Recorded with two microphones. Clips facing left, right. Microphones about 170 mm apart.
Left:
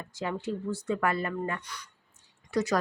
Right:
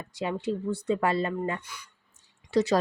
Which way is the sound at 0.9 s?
25° right (ahead or behind).